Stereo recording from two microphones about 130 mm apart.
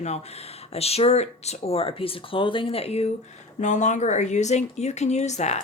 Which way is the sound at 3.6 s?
70° left (ahead or behind).